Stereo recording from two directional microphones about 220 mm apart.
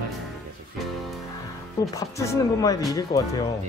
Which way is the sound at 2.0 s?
15° left (ahead or behind).